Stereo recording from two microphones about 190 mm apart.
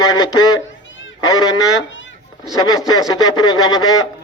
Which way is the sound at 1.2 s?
20° left (ahead or behind).